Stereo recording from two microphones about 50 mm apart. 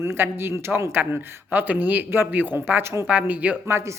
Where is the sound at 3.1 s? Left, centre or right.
Right.